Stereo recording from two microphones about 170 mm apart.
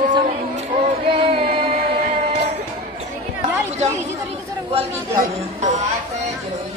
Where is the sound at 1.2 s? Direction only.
35° right (ahead or behind).